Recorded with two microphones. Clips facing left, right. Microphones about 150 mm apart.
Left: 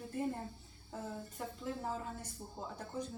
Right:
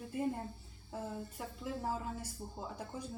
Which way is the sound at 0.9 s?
5° right (ahead or behind).